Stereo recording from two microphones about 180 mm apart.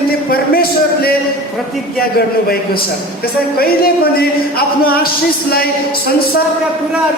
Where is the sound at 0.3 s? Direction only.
55° left (ahead or behind).